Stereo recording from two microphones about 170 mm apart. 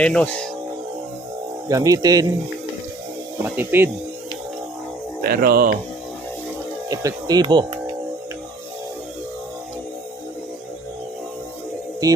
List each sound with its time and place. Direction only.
0.0 s speech: 5° left (ahead or behind)
1.6 s speech: 20° right (ahead or behind)
3.4 s speech: 10° right (ahead or behind)
5.2 s speech: 65° right (ahead or behind)
6.8 s speech: 20° right (ahead or behind)